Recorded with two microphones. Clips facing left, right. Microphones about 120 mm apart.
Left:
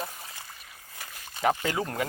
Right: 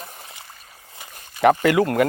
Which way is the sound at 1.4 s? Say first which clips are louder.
Right 11 dB; 60° right (ahead or behind).